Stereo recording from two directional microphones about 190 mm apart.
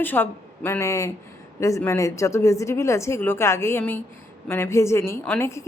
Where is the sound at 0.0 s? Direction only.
10° left (ahead or behind).